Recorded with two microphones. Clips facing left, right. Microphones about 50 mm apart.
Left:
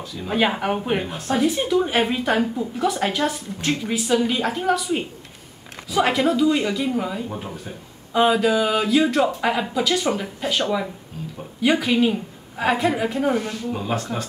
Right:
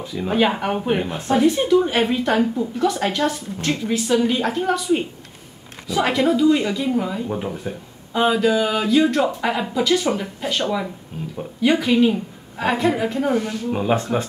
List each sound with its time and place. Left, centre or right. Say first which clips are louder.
0.0 s speech: right 5 dB; right
0.3 s speech: right 1 dB; centre
7.2 s speech: right 6 dB; centre
8.1 s speech: even; centre
13.7 s speech: right 5 dB; right